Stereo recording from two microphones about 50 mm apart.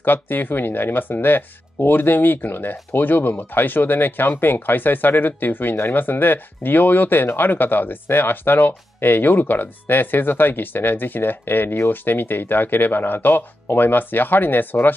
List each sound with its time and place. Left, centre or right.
0.0 s speech: left